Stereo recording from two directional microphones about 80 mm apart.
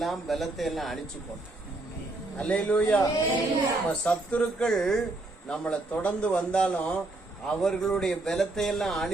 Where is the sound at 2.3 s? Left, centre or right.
Centre.